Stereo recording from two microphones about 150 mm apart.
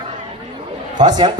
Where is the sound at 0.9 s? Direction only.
30° right (ahead or behind).